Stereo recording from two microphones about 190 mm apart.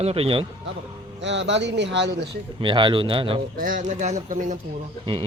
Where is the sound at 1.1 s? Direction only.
70° right (ahead or behind).